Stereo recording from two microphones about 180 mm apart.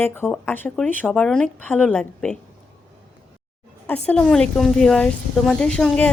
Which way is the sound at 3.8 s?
5° left (ahead or behind).